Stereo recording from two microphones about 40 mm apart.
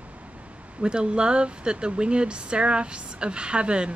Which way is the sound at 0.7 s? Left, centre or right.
Right.